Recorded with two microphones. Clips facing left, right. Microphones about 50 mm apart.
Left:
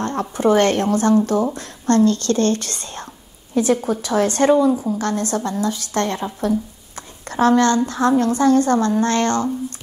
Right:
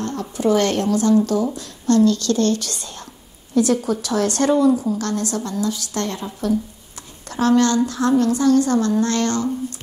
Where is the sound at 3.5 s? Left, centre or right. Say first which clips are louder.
Even; left.